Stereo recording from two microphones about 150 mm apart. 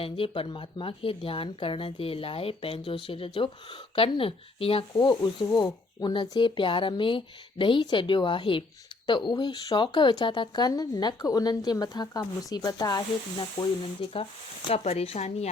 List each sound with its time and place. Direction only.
0.0 s speech: 35° left (ahead or behind)
13.6 s speech: 35° left (ahead or behind)